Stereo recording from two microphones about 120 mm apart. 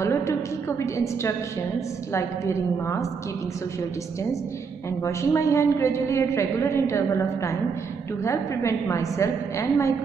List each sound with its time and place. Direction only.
0.0 s a woman's voice: 25° left (ahead or behind)
5.0 s a woman's voice: 25° left (ahead or behind)